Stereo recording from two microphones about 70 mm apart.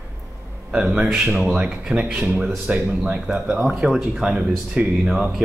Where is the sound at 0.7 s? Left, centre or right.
Centre.